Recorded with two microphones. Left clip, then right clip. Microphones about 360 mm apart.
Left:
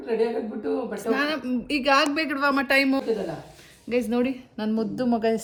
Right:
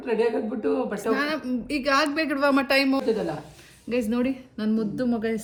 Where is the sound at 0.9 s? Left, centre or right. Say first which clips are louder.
Even; centre.